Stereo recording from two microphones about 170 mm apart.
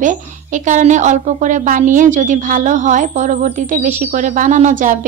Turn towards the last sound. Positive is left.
turn(degrees=-50)  # may be behind; listen again after turning